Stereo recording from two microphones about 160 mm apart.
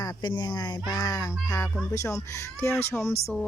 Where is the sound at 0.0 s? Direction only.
30° left (ahead or behind).